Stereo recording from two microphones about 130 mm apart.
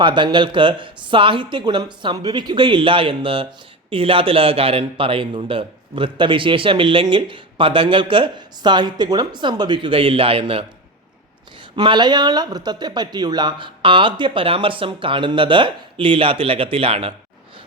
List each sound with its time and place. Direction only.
0.0 s speech: 40° right (ahead or behind)
11.8 s speech: 35° right (ahead or behind)